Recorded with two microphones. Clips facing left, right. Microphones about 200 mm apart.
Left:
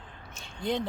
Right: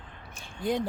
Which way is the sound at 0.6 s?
10° right (ahead or behind).